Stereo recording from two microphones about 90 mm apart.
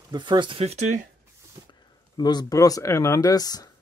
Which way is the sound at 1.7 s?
50° left (ahead or behind).